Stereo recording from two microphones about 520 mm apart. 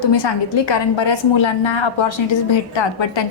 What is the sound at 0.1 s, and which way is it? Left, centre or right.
A woman's voice, left.